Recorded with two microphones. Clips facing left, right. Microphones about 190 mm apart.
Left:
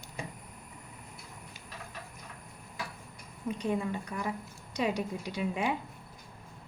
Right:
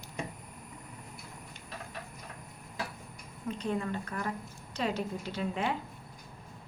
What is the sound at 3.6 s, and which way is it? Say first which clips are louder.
A woman's voice: left 1 dB; 15° left (ahead or behind).